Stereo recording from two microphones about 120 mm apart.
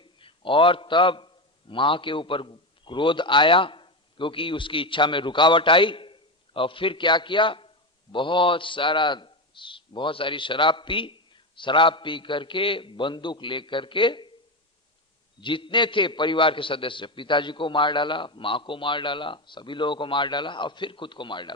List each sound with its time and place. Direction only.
0.0 s a man's voice: 45° left (ahead or behind)
15.4 s a man's voice: 45° left (ahead or behind)